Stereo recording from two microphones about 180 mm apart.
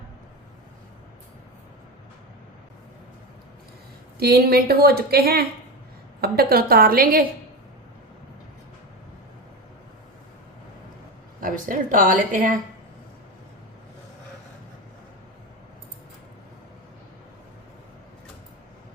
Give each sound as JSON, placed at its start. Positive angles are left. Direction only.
{"t": 4.2, "sound": "a woman's voice", "side_deg": -60}
{"t": 11.3, "sound": "speech", "side_deg": -50}